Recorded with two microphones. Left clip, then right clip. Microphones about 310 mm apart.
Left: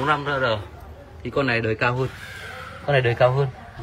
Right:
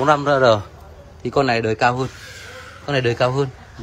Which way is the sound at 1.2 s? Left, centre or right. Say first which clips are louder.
Right 4 dB; centre.